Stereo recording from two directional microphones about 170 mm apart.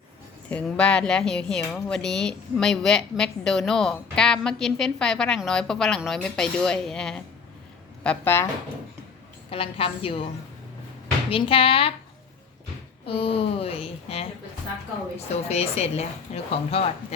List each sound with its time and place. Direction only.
0.5 s a woman's voice: 5° left (ahead or behind)
9.5 s a woman's voice: 35° left (ahead or behind)
11.3 s a woman's voice: 35° left (ahead or behind)
13.1 s a woman's voice: 30° left (ahead or behind)
15.4 s a woman's voice: 40° left (ahead or behind)